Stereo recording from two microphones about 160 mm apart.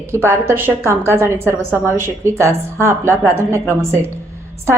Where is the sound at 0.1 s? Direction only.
15° right (ahead or behind).